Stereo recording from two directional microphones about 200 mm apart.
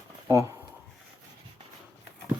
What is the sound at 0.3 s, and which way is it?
Speech, 15° right (ahead or behind).